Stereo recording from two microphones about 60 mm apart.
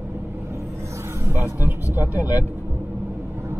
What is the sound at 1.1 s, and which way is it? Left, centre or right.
Music, right.